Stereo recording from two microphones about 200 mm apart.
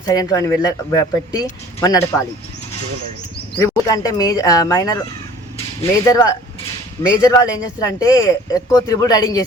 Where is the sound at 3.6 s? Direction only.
15° left (ahead or behind).